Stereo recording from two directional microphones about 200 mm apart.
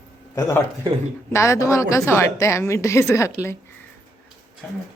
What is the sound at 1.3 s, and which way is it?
A woman's voice, 15° left (ahead or behind).